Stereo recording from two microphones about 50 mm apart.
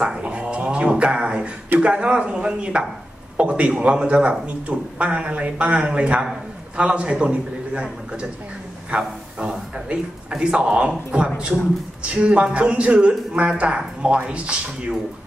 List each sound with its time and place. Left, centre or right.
0.0 s speech: right
8.9 s speech: right